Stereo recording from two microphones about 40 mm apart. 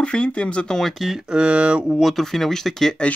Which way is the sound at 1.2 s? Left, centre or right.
Right.